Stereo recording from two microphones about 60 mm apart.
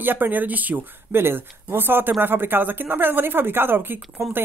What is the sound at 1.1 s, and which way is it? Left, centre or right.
Speech, right.